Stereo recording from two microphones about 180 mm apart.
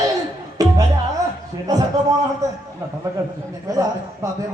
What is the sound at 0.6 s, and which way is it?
Music, 20° right (ahead or behind).